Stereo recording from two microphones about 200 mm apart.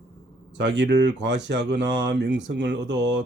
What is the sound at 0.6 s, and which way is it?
Speech, 60° right (ahead or behind).